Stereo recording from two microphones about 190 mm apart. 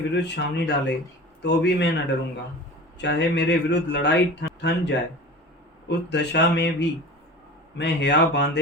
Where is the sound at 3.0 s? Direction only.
65° left (ahead or behind).